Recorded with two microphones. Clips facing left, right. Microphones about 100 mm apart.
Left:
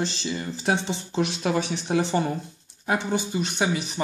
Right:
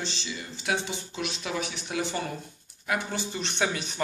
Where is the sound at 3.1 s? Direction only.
15° left (ahead or behind).